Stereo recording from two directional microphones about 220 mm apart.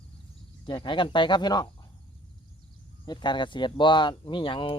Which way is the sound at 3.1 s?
20° left (ahead or behind).